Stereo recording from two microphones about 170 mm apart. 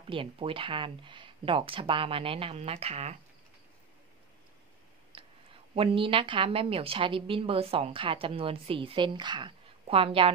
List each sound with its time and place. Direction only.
0.0 s a woman's voice: 30° right (ahead or behind)
5.1 s clicking: 30° right (ahead or behind)
5.8 s a woman's voice: 30° right (ahead or behind)